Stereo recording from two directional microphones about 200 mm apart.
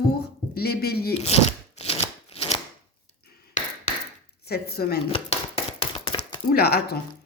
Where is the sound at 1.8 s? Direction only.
30° left (ahead or behind).